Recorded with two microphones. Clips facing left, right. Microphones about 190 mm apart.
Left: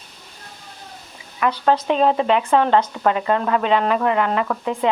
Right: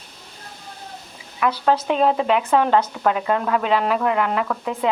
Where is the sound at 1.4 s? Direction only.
5° right (ahead or behind).